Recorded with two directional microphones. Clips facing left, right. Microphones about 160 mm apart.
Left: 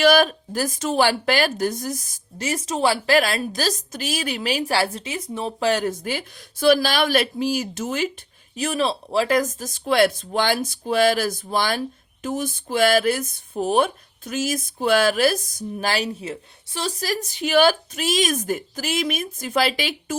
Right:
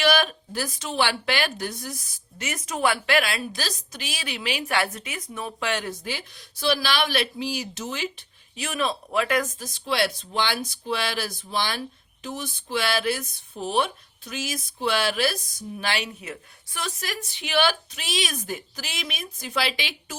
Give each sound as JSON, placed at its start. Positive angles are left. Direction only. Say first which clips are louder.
{"t": 0.0, "sound": "speech", "louder": "left 6 dB", "side_deg": 45}
{"t": 8.5, "sound": "speech", "louder": "left 5 dB", "side_deg": 35}